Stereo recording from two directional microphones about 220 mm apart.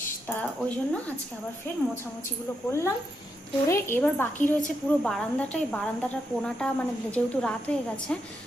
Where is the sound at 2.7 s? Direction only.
10° left (ahead or behind).